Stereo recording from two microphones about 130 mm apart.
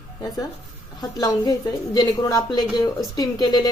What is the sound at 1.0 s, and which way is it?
A woman's voice, 30° left (ahead or behind).